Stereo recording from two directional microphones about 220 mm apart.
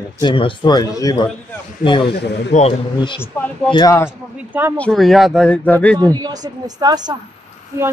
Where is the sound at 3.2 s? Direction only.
5° left (ahead or behind).